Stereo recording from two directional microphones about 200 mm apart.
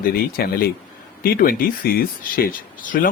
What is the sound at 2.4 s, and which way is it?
Speech, 50° left (ahead or behind).